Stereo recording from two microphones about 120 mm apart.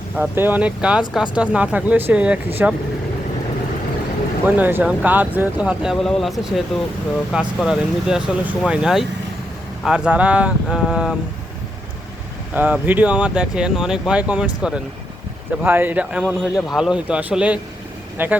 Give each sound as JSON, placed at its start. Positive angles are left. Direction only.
{"t": 0.2, "sound": "speech", "side_deg": -15}
{"t": 4.4, "sound": "speech", "side_deg": -15}
{"t": 12.5, "sound": "speech", "side_deg": -15}
{"t": 16.2, "sound": "speech", "side_deg": 0}